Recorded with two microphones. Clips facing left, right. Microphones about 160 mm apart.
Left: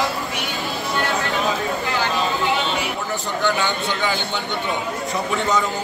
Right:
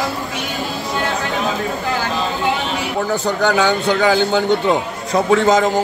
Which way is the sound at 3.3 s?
90° right.